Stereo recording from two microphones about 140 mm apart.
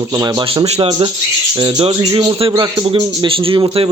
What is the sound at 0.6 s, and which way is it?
A man's voice, 50° right (ahead or behind).